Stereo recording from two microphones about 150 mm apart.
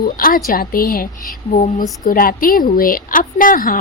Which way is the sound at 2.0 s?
70° left (ahead or behind).